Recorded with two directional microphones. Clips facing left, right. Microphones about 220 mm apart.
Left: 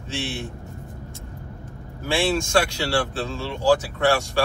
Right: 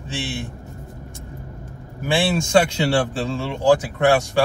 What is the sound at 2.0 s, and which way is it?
A man's voice, 20° right (ahead or behind).